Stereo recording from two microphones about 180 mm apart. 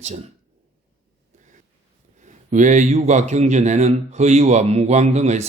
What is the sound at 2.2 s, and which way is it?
A man's voice, 45° right (ahead or behind).